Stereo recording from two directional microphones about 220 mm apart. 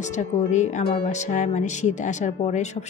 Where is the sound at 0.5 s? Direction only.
35° left (ahead or behind).